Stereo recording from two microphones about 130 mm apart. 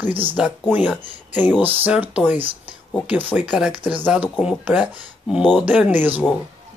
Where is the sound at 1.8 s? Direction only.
10° right (ahead or behind).